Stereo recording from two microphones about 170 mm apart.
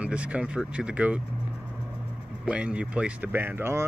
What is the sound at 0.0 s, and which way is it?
Speech, 5° right (ahead or behind).